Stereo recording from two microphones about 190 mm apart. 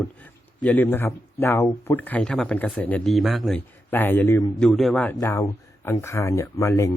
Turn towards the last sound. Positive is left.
turn(degrees=15)  # may be behind; listen again after turning